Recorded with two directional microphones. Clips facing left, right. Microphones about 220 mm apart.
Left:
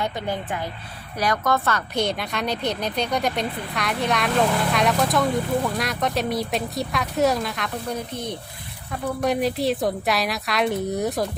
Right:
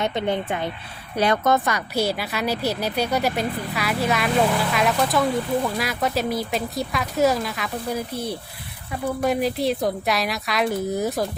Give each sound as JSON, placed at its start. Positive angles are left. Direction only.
{"t": 0.0, "sound": "a woman's voice", "side_deg": -25}